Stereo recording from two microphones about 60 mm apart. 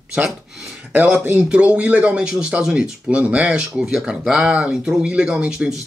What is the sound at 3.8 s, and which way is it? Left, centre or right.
Speech, centre.